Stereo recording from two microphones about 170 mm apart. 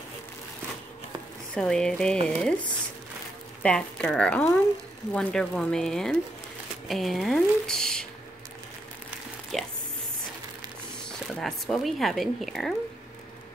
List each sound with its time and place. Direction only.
1.5 s speech: 5° left (ahead or behind)
3.6 s speech: 5° left (ahead or behind)
9.5 s a sound: centre (ahead or behind)
11.1 s speech: 5° left (ahead or behind)